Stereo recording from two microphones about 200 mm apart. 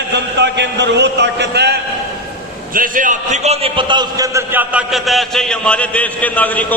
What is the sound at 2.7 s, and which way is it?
A man's voice, 45° right (ahead or behind).